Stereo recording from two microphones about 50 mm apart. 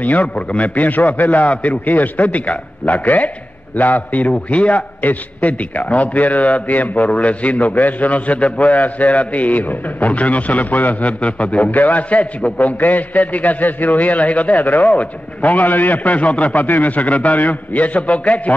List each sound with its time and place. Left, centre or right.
0.0 s a man's voice: left